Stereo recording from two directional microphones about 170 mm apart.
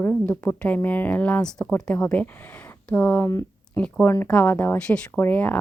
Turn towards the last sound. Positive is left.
turn(degrees=10)  # may be behind; listen again after turning